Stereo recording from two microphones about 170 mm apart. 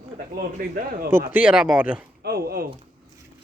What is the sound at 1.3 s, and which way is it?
Speech, 10° right (ahead or behind).